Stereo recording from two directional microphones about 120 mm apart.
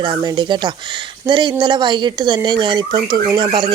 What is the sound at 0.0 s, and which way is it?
Speech, 40° right (ahead or behind).